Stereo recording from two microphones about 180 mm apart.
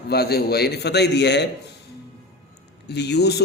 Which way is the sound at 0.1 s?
60° left (ahead or behind).